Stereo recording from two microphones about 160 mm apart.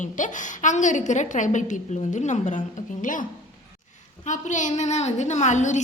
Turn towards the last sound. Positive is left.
turn(degrees=50)  # may be behind; listen again after turning